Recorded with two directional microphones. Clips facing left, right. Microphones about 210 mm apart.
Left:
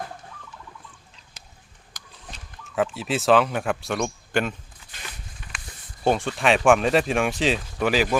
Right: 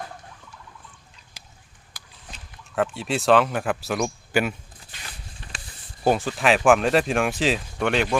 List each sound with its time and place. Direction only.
2.7 s speech: centre (ahead or behind)
5.4 s a sound: 35° right (ahead or behind)
6.1 s speech: centre (ahead or behind)